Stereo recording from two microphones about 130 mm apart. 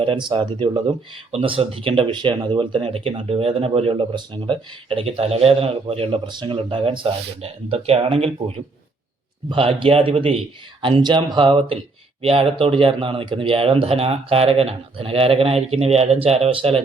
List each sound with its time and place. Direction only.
0.0 s speech: 40° right (ahead or behind)